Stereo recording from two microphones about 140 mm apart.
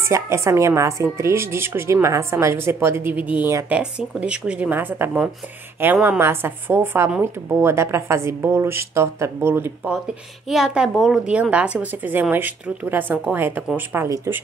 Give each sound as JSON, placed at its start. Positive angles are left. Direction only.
{"t": 0.0, "sound": "a woman's voice", "side_deg": -20}
{"t": 10.5, "sound": "a woman's voice", "side_deg": -5}